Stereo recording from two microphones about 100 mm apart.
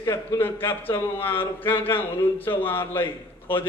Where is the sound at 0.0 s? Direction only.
25° left (ahead or behind).